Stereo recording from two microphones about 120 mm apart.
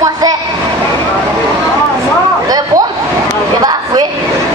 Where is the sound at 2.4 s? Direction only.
35° right (ahead or behind).